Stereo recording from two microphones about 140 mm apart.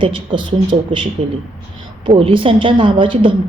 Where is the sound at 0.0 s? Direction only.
35° right (ahead or behind).